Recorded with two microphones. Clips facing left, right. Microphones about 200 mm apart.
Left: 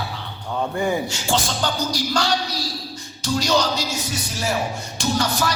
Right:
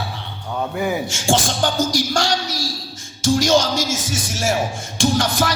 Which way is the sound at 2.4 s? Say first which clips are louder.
Right 1 dB; 90° right.